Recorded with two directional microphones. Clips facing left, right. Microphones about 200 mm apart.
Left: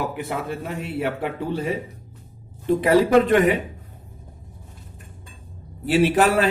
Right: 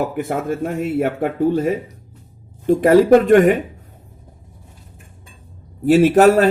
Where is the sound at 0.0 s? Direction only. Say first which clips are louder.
Right 6 dB; 50° right (ahead or behind).